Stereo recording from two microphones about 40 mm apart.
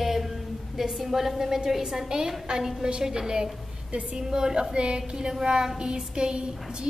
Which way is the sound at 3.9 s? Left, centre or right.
Right.